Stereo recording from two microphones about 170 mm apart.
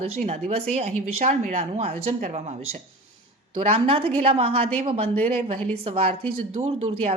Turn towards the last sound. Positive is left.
turn(degrees=-35)  # may be behind; listen again after turning